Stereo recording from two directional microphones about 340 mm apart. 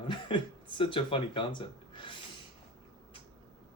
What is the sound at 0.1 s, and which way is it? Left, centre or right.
Speech, centre.